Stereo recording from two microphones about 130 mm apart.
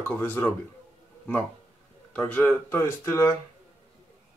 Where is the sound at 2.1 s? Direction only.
10° left (ahead or behind).